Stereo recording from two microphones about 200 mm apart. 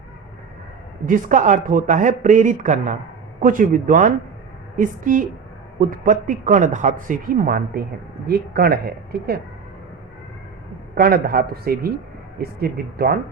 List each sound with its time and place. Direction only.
1.0 s speech: 40° right (ahead or behind)
10.9 s speech: 45° right (ahead or behind)